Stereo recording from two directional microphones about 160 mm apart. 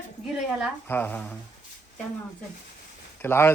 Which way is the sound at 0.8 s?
10° left (ahead or behind).